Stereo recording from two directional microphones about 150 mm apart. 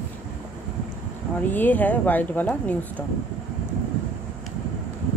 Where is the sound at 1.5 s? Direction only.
10° left (ahead or behind).